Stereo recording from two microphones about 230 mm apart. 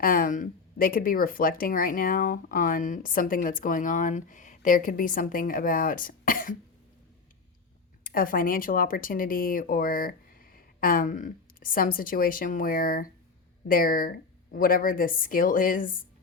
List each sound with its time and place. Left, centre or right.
0.0 s speech: left
8.0 s speech: left